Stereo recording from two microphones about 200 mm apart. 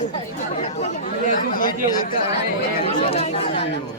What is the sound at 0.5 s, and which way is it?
Speech, 35° left (ahead or behind).